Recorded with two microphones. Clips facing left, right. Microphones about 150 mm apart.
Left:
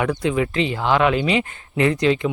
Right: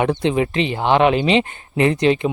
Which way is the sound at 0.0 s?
25° right (ahead or behind).